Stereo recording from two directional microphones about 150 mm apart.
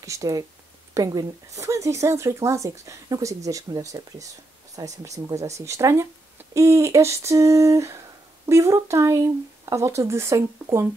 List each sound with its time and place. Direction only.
0.0 s a woman's voice: 20° right (ahead or behind)